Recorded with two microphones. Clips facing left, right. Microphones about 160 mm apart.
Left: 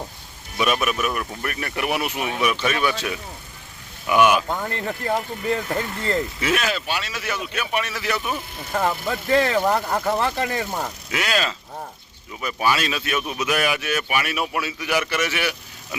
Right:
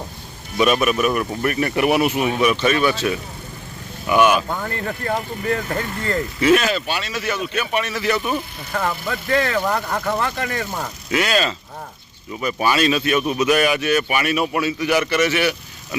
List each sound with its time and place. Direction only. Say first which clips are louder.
0.5 s speech: right 5 dB; 5° left (ahead or behind)
4.7 s speech: right 1 dB; 25° left (ahead or behind)
6.0 s speech: right 1 dB; 25° left (ahead or behind)
6.4 s speech: right 7 dB; 5° left (ahead or behind)
8.7 s speech: left 1 dB; 25° left (ahead or behind)
10.7 s speech: right 3 dB; 10° left (ahead or behind)